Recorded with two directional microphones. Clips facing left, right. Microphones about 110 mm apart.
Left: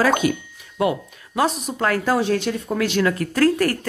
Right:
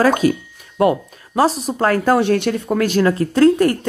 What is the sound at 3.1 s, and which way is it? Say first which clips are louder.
Speech: right 5 dB; 25° right (ahead or behind).